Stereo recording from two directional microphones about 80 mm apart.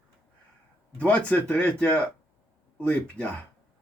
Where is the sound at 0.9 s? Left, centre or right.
Centre.